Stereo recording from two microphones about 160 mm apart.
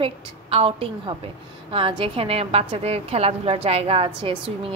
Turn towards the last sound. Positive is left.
turn(degrees=-35)  # may be behind; listen again after turning